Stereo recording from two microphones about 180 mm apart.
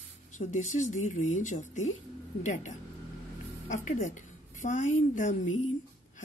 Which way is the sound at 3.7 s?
45° left (ahead or behind).